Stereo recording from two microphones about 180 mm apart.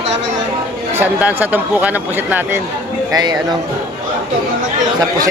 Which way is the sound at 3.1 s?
20° right (ahead or behind).